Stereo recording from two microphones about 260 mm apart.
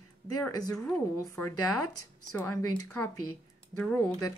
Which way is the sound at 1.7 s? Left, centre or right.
Left.